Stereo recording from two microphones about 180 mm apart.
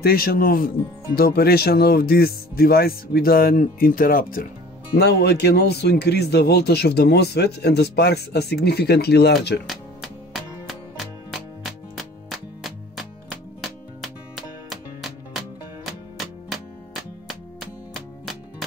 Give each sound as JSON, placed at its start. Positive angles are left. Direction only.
{"t": 0.0, "sound": "speech", "side_deg": 55}
{"t": 4.9, "sound": "speech", "side_deg": 65}
{"t": 9.7, "sound": "music", "side_deg": 0}